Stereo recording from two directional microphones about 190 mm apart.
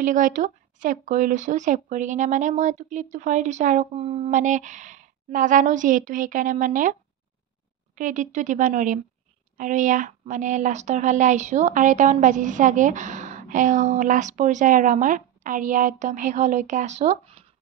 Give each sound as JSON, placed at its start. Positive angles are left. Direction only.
{"t": 0.0, "sound": "a woman's voice", "side_deg": -40}